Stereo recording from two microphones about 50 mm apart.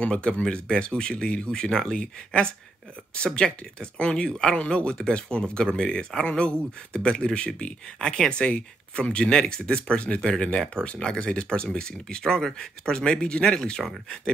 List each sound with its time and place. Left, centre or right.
0.0 s speech: centre